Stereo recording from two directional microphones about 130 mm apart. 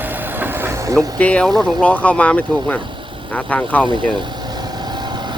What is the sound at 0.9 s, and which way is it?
Speech, 10° left (ahead or behind).